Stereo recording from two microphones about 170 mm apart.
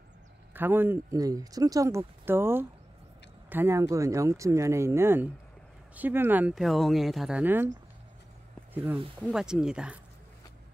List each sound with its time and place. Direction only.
0.5 s speech: 10° right (ahead or behind)
8.7 s speech: 10° right (ahead or behind)